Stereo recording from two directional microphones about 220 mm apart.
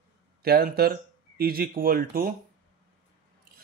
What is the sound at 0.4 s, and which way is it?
Speech, 45° right (ahead or behind).